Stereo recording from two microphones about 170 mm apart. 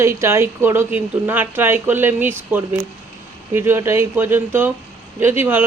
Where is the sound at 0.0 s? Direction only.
15° right (ahead or behind).